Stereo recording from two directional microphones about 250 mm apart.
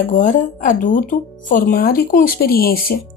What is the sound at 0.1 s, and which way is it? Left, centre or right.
Speech, left.